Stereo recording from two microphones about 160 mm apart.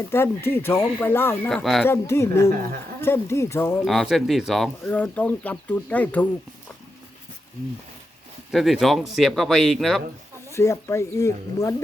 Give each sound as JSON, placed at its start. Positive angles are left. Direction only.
{"t": 0.1, "sound": "speech", "side_deg": 15}
{"t": 1.5, "sound": "speech", "side_deg": 0}
{"t": 1.9, "sound": "speech", "side_deg": 15}
{"t": 3.8, "sound": "speech", "side_deg": 0}
{"t": 8.5, "sound": "speech", "side_deg": 0}
{"t": 10.5, "sound": "speech", "side_deg": 15}